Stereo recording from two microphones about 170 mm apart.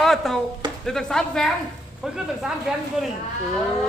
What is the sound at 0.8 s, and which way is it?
Speech, 5° left (ahead or behind).